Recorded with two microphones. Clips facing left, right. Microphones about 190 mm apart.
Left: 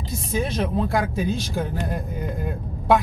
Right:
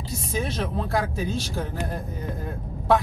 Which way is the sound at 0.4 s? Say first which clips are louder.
Left 4 dB; 15° left (ahead or behind).